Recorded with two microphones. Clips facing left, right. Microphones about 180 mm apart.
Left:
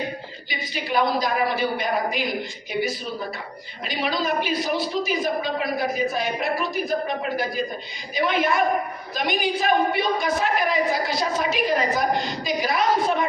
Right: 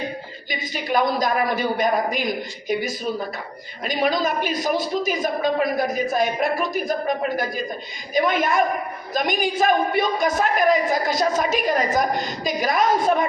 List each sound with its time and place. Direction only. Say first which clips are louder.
0.7 s a woman's voice: right 1 dB; 45° right (ahead or behind)